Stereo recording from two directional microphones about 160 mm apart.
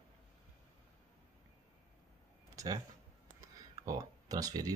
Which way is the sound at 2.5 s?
20° right (ahead or behind).